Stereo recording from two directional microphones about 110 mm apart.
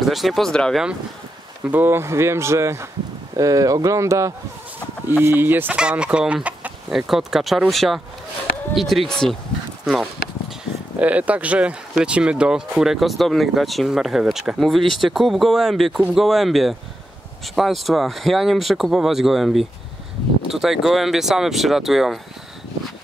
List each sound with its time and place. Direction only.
0.0 s speech: centre (ahead or behind)
1.6 s speech: 15° right (ahead or behind); by 9.4 s 5° left (ahead or behind)
11.0 s speech: 15° right (ahead or behind)